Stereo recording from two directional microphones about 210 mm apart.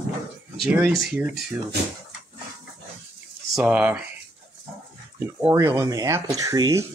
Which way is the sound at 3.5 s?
5° right (ahead or behind).